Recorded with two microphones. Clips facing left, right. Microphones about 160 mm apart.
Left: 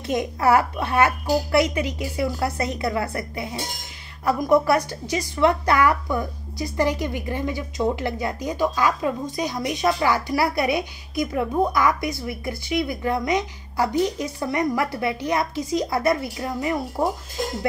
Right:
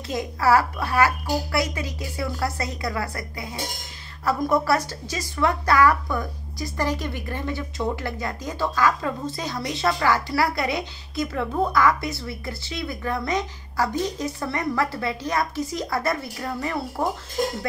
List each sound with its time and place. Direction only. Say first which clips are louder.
0.0 s a woman's voice: left 2 dB; 20° left (ahead or behind)